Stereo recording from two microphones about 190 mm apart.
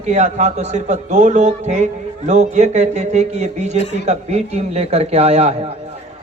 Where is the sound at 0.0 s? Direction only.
35° right (ahead or behind).